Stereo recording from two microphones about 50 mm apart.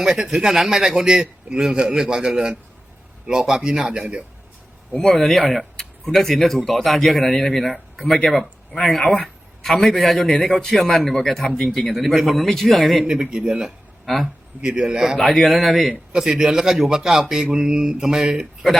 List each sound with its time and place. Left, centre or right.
0.0 s a man's voice: centre
4.9 s a man's voice: centre
13.3 s speech: centre
13.6 s a sound: centre
14.6 s a man's voice: centre
16.1 s a man's voice: centre